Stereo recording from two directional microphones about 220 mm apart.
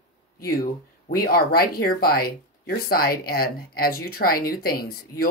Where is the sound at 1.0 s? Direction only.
40° left (ahead or behind).